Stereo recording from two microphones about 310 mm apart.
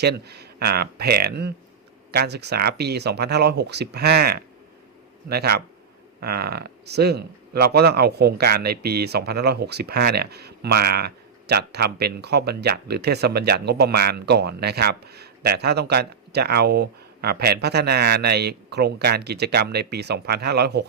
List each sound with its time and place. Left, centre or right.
0.0 s speech: right